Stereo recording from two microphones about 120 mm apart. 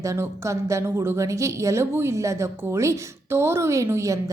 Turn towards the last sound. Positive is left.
turn(degrees=-25)  # may be behind; listen again after turning